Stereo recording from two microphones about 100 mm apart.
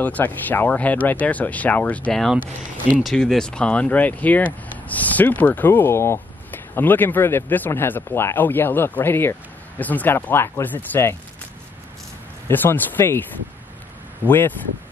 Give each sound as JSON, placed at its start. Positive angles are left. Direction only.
{"t": 0.0, "sound": "speech", "side_deg": 15}
{"t": 3.0, "sound": "speech", "side_deg": 0}
{"t": 12.4, "sound": "speech", "side_deg": 20}
{"t": 14.2, "sound": "speech", "side_deg": 20}